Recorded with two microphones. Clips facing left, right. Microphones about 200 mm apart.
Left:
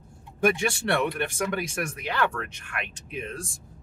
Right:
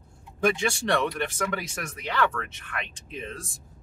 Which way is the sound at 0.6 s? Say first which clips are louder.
Even; 10° left (ahead or behind).